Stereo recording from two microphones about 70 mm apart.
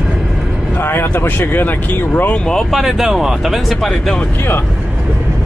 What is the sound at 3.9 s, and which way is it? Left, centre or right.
Speech, centre.